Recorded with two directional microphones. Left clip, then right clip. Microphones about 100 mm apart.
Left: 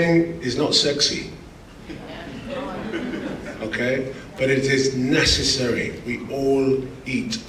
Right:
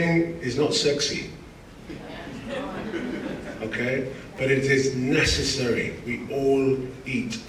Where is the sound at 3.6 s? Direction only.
25° left (ahead or behind).